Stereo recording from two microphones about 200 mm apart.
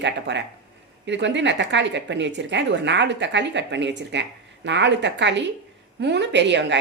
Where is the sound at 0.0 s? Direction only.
60° right (ahead or behind).